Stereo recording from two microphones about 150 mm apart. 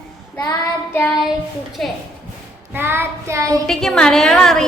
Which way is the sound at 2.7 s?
15° right (ahead or behind).